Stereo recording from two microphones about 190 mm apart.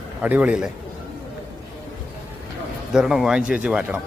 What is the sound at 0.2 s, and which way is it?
Speech, 5° right (ahead or behind).